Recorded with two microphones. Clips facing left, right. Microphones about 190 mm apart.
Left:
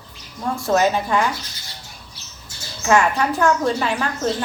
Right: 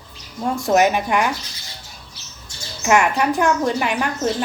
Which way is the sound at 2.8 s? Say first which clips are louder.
Even; 15° right (ahead or behind).